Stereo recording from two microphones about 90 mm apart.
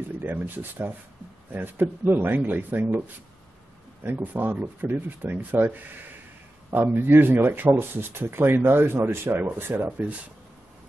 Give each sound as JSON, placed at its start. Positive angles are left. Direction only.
{"t": 0.2, "sound": "speech", "side_deg": -20}
{"t": 4.0, "sound": "speech", "side_deg": -20}